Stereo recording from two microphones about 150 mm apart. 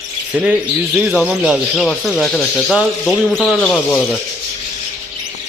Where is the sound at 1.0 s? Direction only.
5° right (ahead or behind).